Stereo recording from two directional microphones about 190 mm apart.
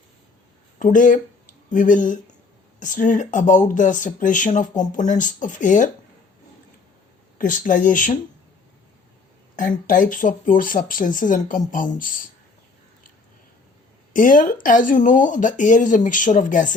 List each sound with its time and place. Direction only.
0.8 s speech: 45° left (ahead or behind)
7.3 s speech: 45° left (ahead or behind)
9.6 s speech: 45° left (ahead or behind)
14.1 s speech: 45° left (ahead or behind)